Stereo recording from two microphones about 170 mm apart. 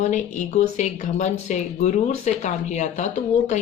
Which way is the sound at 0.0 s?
45° left (ahead or behind).